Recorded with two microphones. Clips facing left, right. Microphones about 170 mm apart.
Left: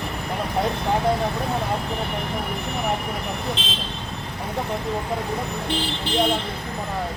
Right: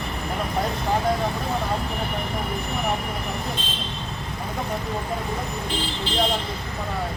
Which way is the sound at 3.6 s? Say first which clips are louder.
Left 2 dB; 90° left.